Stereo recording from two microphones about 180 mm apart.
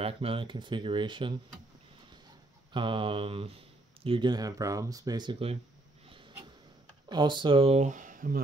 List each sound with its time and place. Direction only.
0.0 s speech: 30° right (ahead or behind)
2.7 s speech: 30° right (ahead or behind)
7.1 s speech: 25° right (ahead or behind); by 8.4 s 50° right (ahead or behind)